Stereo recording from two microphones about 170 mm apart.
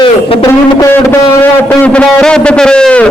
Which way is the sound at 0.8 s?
15° left (ahead or behind).